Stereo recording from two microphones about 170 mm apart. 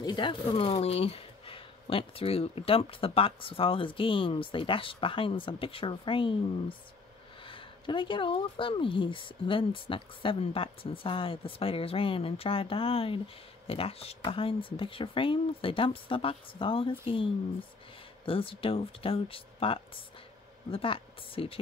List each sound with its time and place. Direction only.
0.0 s speech: 25° left (ahead or behind)
7.4 s speech: 30° left (ahead or behind)